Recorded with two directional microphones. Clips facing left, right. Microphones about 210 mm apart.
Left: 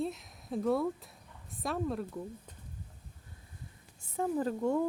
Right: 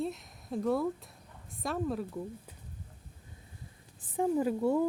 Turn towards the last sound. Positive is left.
turn(degrees=-5)  # may be behind; listen again after turning